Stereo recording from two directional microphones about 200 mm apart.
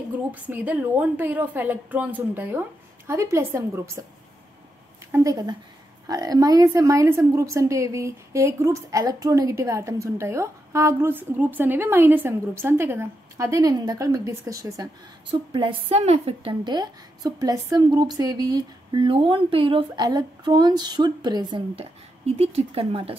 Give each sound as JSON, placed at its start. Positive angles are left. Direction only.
{"t": 0.3, "sound": "a woman's voice", "side_deg": -10}
{"t": 5.1, "sound": "a woman's voice", "side_deg": -15}